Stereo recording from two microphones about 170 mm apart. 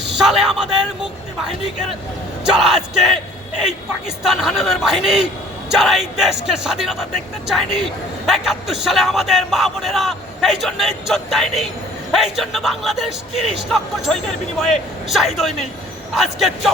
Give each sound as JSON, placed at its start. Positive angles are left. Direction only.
{"t": 0.2, "sound": "a man's voice", "side_deg": 0}